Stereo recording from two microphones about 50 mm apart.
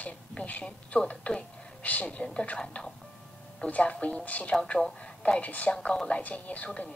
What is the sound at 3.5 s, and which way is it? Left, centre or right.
A woman's voice, left.